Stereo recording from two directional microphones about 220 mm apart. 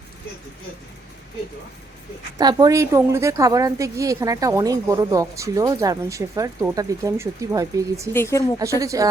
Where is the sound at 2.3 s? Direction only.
15° right (ahead or behind).